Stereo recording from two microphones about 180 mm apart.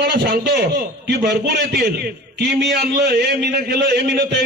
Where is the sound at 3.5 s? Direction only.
65° right (ahead or behind).